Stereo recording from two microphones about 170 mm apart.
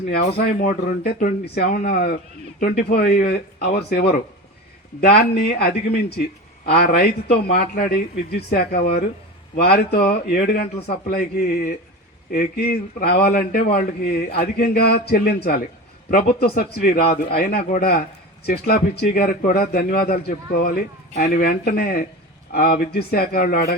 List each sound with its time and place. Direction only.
0.1 s speech: 75° left (ahead or behind)
0.6 s a man's voice: 55° left (ahead or behind)